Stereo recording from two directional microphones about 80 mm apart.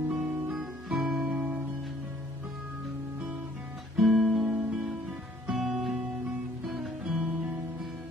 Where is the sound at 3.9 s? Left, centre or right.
Centre.